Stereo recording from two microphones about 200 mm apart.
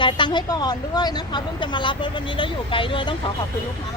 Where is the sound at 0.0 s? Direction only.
25° left (ahead or behind).